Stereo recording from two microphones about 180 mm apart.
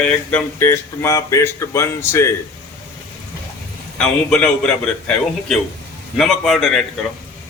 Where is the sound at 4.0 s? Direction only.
5° left (ahead or behind).